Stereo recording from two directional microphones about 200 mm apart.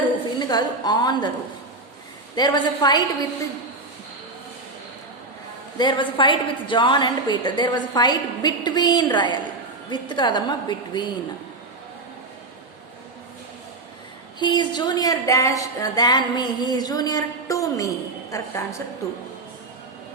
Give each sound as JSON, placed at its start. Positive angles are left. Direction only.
{"t": 0.3, "sound": "a woman's voice", "side_deg": 20}
{"t": 2.3, "sound": "a woman's voice", "side_deg": 20}
{"t": 5.7, "sound": "a woman's voice", "side_deg": 20}
{"t": 14.3, "sound": "a woman's voice", "side_deg": 20}